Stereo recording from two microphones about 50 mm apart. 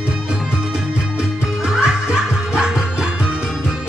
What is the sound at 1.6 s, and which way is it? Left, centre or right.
Music, centre.